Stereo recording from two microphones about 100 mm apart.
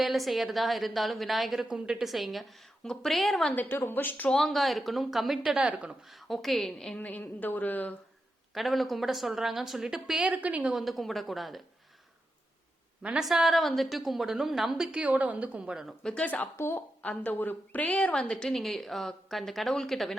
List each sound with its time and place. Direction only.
0.0 s a woman's voice: centre (ahead or behind)
3.5 s speech: 20° left (ahead or behind)
4.3 s a woman's voice: 5° left (ahead or behind)
6.1 s a woman's voice: centre (ahead or behind); by 7.9 s 15° left (ahead or behind)
8.5 s a woman's voice: centre (ahead or behind)
10.8 s a woman's voice: centre (ahead or behind)
13.0 s a woman's voice: 10° right (ahead or behind)
16.0 s a woman's voice: 10° left (ahead or behind)